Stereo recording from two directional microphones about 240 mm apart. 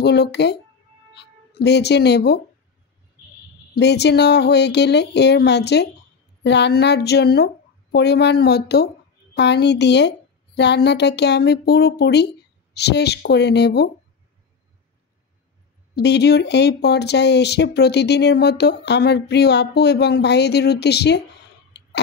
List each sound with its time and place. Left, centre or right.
0.0 s speech: left
3.7 s speech: left
15.9 s speech: left
21.7 s a sound: left